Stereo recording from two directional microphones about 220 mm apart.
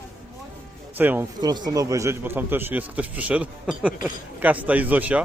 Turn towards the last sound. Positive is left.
turn(degrees=-5)  # may be behind; listen again after turning